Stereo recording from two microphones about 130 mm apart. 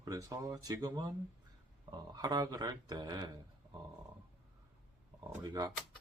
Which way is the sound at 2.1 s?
30° right (ahead or behind).